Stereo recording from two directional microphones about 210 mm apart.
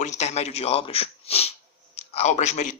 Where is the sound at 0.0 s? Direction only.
30° left (ahead or behind).